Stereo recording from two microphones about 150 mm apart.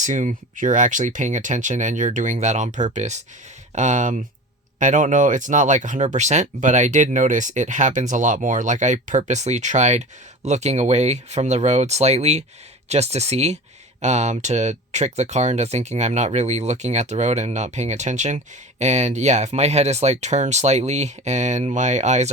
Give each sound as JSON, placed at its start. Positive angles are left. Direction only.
{"t": 0.0, "sound": "speech", "side_deg": -55}